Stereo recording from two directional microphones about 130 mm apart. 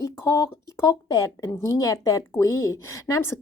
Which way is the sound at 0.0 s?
25° left (ahead or behind).